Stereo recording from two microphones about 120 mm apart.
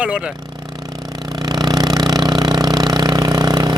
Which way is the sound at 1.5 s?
35° right (ahead or behind).